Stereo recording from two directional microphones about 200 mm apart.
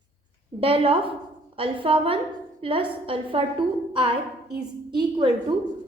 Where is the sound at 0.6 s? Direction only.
25° right (ahead or behind).